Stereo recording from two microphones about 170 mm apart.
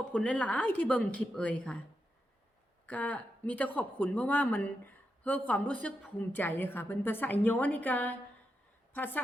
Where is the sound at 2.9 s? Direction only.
10° left (ahead or behind).